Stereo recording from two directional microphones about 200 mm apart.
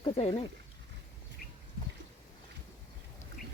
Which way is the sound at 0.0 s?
30° left (ahead or behind).